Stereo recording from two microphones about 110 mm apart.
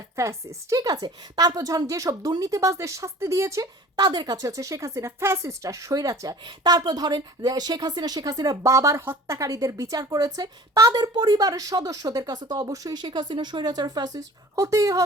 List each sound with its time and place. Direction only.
0.2 s speech: 25° right (ahead or behind)
3.9 s speech: 40° right (ahead or behind)